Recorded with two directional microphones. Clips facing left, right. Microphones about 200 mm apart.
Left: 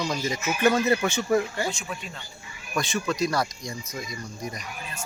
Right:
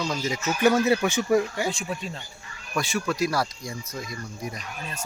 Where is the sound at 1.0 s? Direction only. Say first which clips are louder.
Right 2 dB; 10° right (ahead or behind).